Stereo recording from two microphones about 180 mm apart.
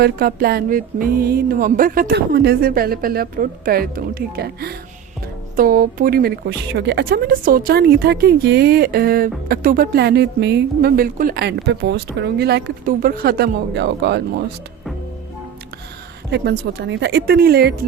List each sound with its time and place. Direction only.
0.0 s a woman's voice: 55° right (ahead or behind)
5.5 s a woman's voice: 50° right (ahead or behind); by 14.4 s 70° right (ahead or behind)
16.3 s a woman's voice: 65° right (ahead or behind)